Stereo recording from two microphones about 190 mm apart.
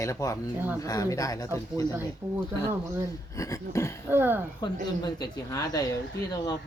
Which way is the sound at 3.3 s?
15° left (ahead or behind).